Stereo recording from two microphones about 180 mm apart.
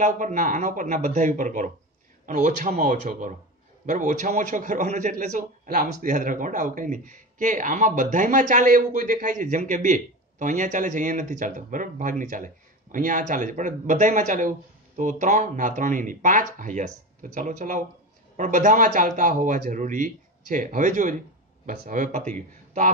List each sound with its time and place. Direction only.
0.0 s a man's voice: 45° right (ahead or behind)